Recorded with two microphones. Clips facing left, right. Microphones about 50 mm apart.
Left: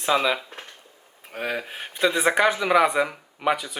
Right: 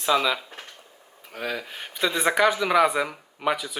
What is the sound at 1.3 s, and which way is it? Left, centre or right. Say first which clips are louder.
Speech: left 2 dB; left.